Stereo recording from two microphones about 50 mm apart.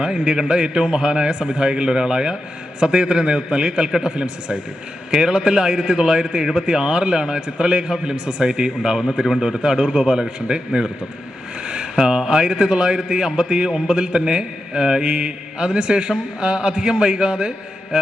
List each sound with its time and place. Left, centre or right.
0.0 s a man's voice: centre
11.6 s a sound: centre
12.0 s a man's voice: centre